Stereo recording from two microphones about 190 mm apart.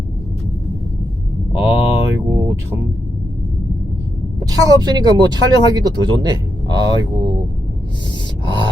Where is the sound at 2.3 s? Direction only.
15° right (ahead or behind).